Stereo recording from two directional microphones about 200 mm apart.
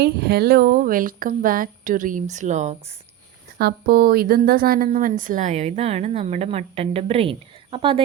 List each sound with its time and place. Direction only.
0.0 s a woman's voice: 55° right (ahead or behind); by 2.9 s 35° right (ahead or behind)
3.6 s a woman's voice: 50° right (ahead or behind); by 8.0 s 25° right (ahead or behind)